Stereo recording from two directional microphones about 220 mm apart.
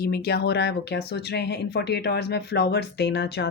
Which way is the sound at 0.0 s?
45° left (ahead or behind).